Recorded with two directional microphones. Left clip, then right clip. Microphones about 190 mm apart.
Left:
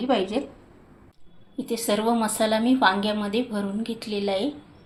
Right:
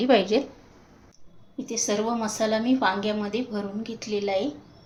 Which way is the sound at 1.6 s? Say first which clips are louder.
Left 2 dB; 15° left (ahead or behind).